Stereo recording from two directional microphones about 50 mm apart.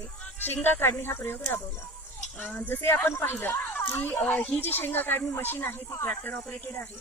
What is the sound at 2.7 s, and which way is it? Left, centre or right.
Speech, left.